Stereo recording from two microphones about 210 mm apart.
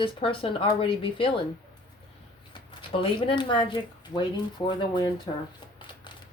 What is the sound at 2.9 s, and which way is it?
Speech, 25° left (ahead or behind).